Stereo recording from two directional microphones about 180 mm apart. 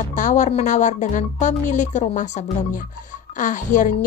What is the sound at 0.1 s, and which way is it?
Speech, 45° left (ahead or behind).